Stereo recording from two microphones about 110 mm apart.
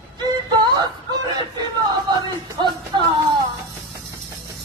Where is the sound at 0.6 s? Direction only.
40° right (ahead or behind).